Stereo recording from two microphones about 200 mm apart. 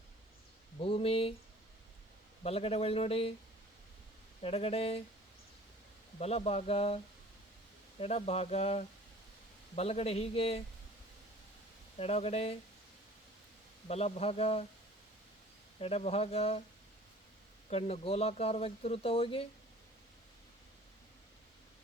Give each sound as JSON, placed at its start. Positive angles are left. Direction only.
{"t": 0.8, "sound": "speech", "side_deg": 30}
{"t": 2.4, "sound": "a man's voice", "side_deg": 30}
{"t": 4.4, "sound": "a man's voice", "side_deg": 30}
{"t": 6.1, "sound": "speech", "side_deg": 30}
{"t": 11.9, "sound": "speech", "side_deg": 30}
{"t": 13.8, "sound": "a man's voice", "side_deg": 30}
{"t": 15.8, "sound": "a man's voice", "side_deg": 30}
{"t": 17.7, "sound": "speech", "side_deg": 30}